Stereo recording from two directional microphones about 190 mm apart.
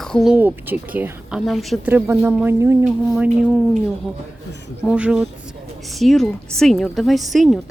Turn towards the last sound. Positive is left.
turn(degrees=0)  # may be behind; listen again after turning